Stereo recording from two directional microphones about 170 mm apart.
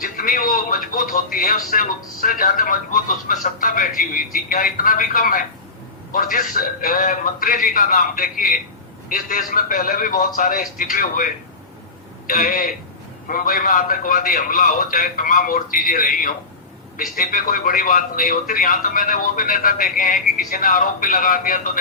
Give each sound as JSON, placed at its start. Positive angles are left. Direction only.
{"t": 0.2, "sound": "a man's voice", "side_deg": 55}
{"t": 12.3, "sound": "a man's voice", "side_deg": 55}